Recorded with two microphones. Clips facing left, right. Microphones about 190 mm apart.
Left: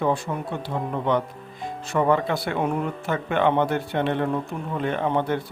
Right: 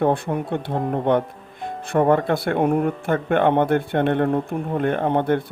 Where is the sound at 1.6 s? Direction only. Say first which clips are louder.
Right 4 dB; 55° right (ahead or behind).